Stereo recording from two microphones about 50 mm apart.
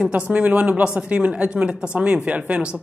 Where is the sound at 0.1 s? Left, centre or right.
Right.